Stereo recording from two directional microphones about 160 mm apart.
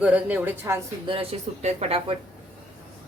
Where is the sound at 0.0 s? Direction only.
10° right (ahead or behind).